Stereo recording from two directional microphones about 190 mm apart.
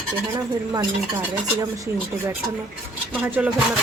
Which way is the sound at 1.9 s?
10° right (ahead or behind).